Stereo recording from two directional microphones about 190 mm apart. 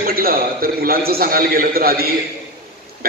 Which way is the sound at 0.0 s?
50° right (ahead or behind).